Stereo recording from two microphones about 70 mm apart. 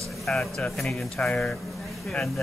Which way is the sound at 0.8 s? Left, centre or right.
Centre.